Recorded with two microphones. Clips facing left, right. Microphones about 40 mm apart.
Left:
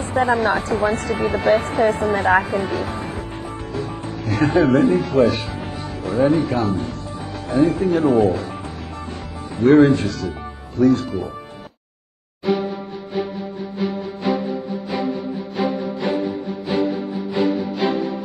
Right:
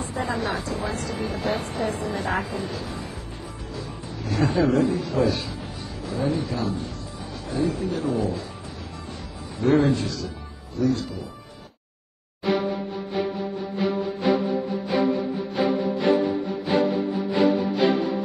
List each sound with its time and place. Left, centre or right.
0.0 s a woman's voice: left
3.7 s music: left
9.6 s a woman's voice: left
13.7 s music: centre
15.5 s music: centre